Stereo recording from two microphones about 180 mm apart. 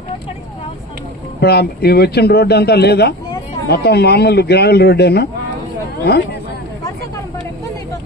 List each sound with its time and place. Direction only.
1.4 s a man's voice: 60° left (ahead or behind)